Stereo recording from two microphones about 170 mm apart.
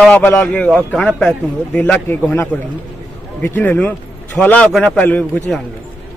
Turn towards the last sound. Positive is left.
turn(degrees=10)  # may be behind; listen again after turning